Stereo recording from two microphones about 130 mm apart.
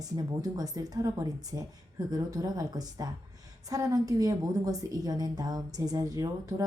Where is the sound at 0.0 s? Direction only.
30° right (ahead or behind).